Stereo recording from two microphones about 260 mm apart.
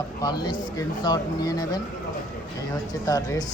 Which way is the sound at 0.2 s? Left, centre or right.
Centre.